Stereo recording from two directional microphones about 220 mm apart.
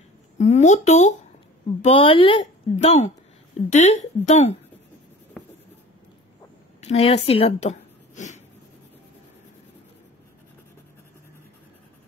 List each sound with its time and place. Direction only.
0.4 s speech: 30° left (ahead or behind)
6.8 s speech: 30° left (ahead or behind)